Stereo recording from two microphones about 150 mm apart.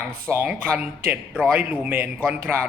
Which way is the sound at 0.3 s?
10° right (ahead or behind).